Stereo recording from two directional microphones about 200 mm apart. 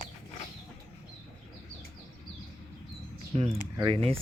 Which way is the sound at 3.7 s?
25° right (ahead or behind).